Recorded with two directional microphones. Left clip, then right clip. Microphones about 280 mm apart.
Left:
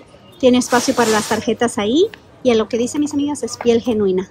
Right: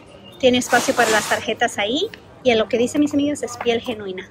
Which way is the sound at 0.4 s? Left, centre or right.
Centre.